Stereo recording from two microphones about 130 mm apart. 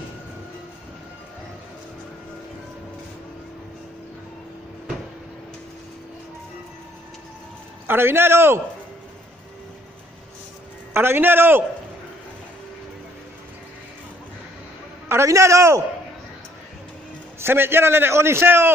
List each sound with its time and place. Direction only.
7.8 s a man's voice: 15° right (ahead or behind)
10.9 s a man's voice: 15° right (ahead or behind)
15.0 s a man's voice: 20° right (ahead or behind)
17.4 s a man's voice: 20° right (ahead or behind)